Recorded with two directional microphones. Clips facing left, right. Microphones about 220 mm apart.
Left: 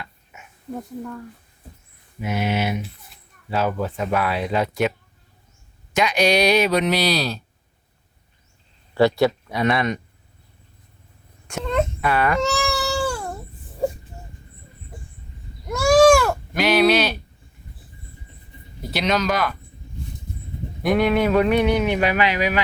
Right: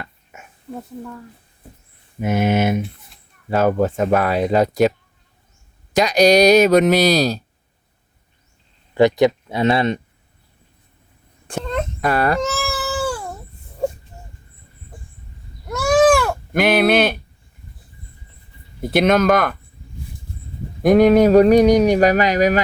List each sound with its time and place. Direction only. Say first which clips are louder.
0.0 s a sound: right 4 dB; 50° right (ahead or behind)
2.2 s speech: right 6 dB; 50° right (ahead or behind)
5.9 s speech: right 6 dB; 40° right (ahead or behind)
9.0 s speech: right 3 dB; 15° right (ahead or behind)
11.6 s wail: left 3 dB; centre (ahead or behind)
11.9 s speech: right 3 dB; 40° right (ahead or behind)
12.4 s baby cry: left 1 dB; centre (ahead or behind)
15.9 s goat: left 1 dB; 5° right (ahead or behind)
16.5 s speech: right 2 dB; 55° right (ahead or behind)
18.8 s speech: right 7 dB; 50° right (ahead or behind)
20.8 s speech: right 7 dB; 45° right (ahead or behind)